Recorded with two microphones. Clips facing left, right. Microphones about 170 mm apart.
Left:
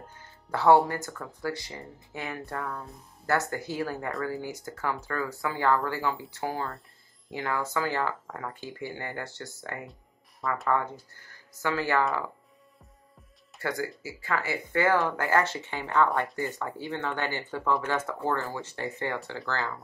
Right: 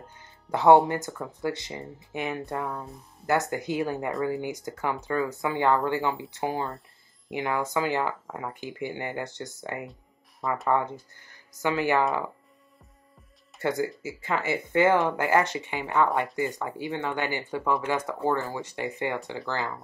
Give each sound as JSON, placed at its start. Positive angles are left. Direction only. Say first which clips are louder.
{"t": 0.2, "sound": "speech", "louder": "right 3 dB", "side_deg": -20}
{"t": 13.6, "sound": "speech", "louder": "right 5 dB", "side_deg": -20}